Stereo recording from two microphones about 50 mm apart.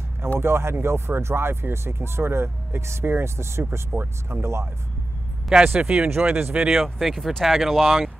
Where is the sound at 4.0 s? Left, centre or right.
Right.